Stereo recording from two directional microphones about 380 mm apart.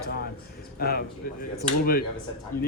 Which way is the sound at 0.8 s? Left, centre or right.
Left.